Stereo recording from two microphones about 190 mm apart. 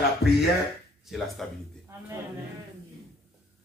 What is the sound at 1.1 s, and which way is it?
Speech, centre (ahead or behind).